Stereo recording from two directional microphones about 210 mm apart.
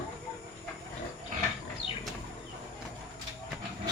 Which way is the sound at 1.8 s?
30° right (ahead or behind).